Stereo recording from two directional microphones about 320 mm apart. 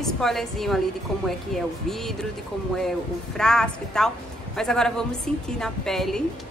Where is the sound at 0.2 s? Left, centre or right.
Centre.